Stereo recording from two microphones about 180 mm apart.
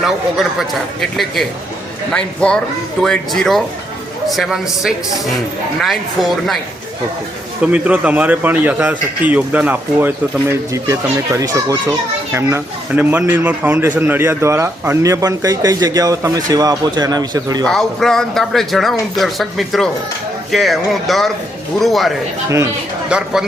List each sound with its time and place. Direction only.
0.0 s speech: centre (ahead or behind)
7.6 s a child's voice: 10° right (ahead or behind)
17.7 s speech: centre (ahead or behind)
22.4 s a child's voice: 15° right (ahead or behind)
23.0 s speech: 5° right (ahead or behind)